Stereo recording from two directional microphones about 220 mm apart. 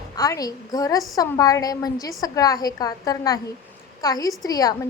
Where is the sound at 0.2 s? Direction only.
15° left (ahead or behind).